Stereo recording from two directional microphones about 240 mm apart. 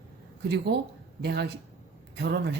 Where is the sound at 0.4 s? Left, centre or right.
Right.